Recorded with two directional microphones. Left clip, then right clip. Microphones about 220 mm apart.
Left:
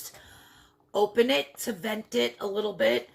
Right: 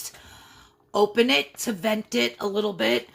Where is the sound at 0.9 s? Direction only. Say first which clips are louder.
Right 3 dB; 35° right (ahead or behind).